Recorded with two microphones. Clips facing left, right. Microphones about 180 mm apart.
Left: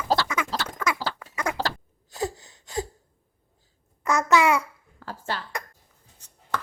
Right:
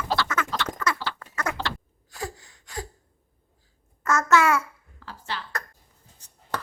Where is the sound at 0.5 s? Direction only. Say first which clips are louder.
Even; 35° left (ahead or behind).